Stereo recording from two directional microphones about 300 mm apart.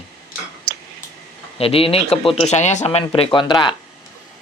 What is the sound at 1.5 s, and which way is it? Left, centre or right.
Speech, centre.